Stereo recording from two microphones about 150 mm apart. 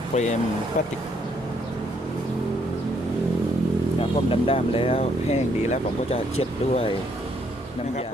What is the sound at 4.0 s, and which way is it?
Speech, 40° left (ahead or behind).